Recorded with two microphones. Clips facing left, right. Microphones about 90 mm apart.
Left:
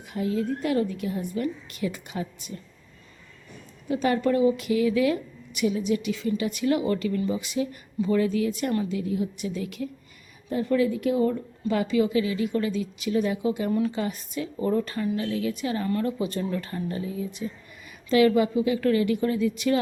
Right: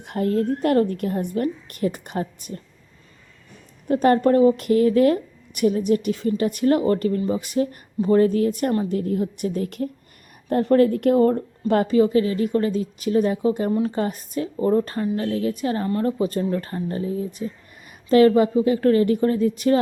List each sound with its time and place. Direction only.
0.0 s speech: 60° right (ahead or behind)
3.8 s speech: 50° right (ahead or behind)
10.5 s speech: 60° right (ahead or behind); by 19.8 s 40° right (ahead or behind)